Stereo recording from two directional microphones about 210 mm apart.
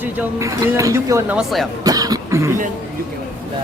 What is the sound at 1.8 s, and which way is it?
Cough, 15° right (ahead or behind).